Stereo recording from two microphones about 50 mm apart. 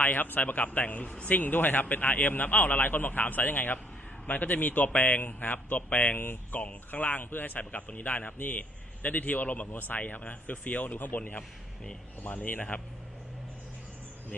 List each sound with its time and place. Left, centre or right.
0.0 s speech: left
6.6 s speech: left